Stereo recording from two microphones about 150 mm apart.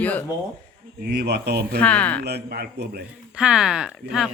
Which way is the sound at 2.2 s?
90° right.